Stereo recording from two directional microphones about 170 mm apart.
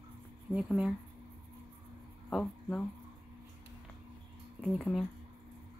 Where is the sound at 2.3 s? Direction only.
5° left (ahead or behind).